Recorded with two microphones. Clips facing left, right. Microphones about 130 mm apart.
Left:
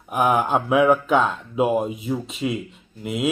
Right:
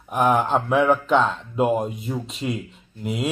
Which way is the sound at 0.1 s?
10° left (ahead or behind).